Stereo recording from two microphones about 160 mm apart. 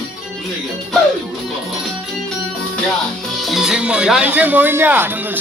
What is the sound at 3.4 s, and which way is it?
Speech, centre (ahead or behind).